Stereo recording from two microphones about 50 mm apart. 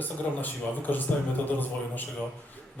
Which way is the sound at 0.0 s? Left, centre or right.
Left.